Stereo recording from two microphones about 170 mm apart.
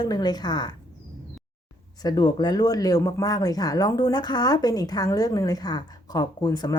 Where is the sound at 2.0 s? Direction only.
25° left (ahead or behind).